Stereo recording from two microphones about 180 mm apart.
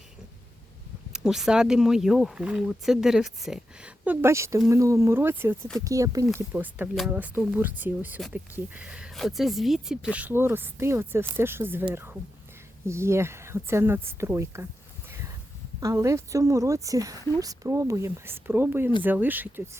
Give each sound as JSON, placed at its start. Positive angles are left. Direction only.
{"t": 1.1, "sound": "speech", "side_deg": -5}
{"t": 15.8, "sound": "speech", "side_deg": -15}